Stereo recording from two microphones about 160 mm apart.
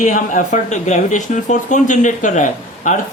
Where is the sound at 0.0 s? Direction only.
55° left (ahead or behind).